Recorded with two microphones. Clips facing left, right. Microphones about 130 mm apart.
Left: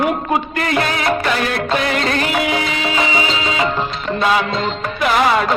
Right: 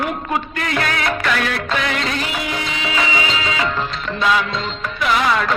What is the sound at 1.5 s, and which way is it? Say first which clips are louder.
Music of bollywood: left 3 dB; 45° left (ahead or behind).